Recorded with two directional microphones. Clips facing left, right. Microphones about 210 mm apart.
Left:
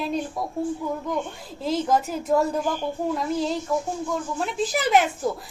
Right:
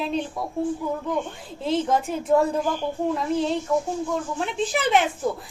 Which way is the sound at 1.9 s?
5° left (ahead or behind).